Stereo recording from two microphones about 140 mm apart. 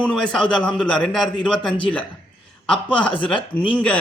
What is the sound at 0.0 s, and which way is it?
A man's voice, 5° left (ahead or behind).